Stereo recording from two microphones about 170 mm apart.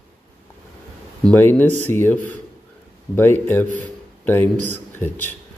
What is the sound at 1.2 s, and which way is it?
Speech, 10° left (ahead or behind).